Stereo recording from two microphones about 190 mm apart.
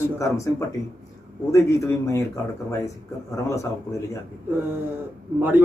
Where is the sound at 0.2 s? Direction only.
15° left (ahead or behind).